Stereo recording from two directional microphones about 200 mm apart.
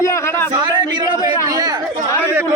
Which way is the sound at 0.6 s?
20° right (ahead or behind).